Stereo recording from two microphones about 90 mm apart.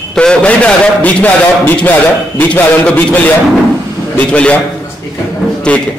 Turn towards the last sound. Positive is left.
turn(degrees=15)  # may be behind; listen again after turning